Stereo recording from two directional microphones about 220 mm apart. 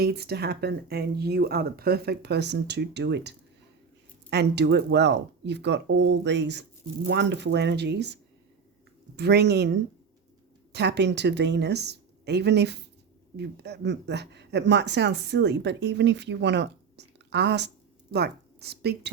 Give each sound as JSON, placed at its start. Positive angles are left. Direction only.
{"t": 0.0, "sound": "speech", "side_deg": -45}